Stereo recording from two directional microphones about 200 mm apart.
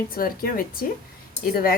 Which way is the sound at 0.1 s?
45° left (ahead or behind).